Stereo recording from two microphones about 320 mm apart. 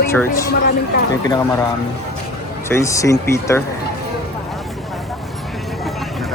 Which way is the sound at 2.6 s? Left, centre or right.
Centre.